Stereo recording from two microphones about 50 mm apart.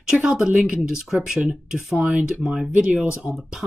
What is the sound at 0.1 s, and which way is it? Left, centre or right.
Speech, centre.